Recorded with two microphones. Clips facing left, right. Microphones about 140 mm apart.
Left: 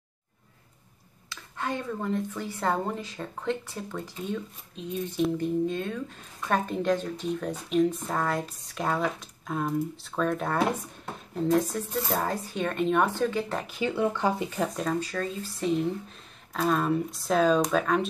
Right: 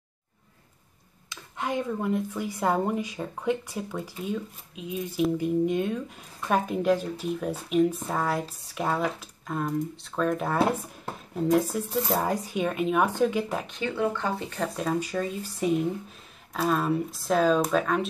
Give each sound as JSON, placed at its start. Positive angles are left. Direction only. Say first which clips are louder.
{"t": 1.3, "sound": "speech", "louder": "right 2 dB", "side_deg": -15}
{"t": 13.7, "sound": "speech", "louder": "left 1 dB", "side_deg": 10}
{"t": 14.8, "sound": "speech", "louder": "right 1 dB", "side_deg": -10}